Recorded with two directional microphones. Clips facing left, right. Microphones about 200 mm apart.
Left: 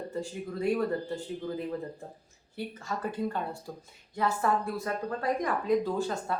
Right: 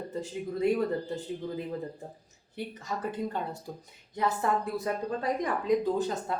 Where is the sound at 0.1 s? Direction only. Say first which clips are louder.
Right 1 dB; 20° right (ahead or behind).